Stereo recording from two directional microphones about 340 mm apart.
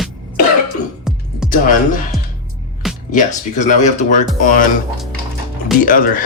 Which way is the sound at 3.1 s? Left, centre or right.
Left.